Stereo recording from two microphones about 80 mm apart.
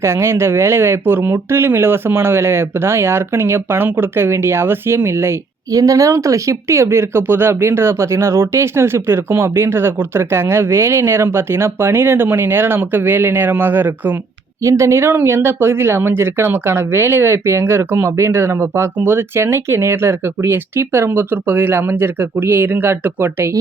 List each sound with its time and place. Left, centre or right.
0.0 s speech: right
5.7 s speech: right
14.6 s speech: right